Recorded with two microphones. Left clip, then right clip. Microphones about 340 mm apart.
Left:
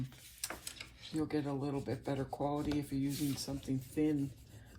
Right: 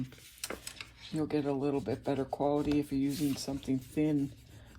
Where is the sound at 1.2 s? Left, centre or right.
Right.